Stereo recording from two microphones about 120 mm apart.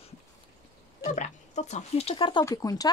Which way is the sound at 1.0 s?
80° left.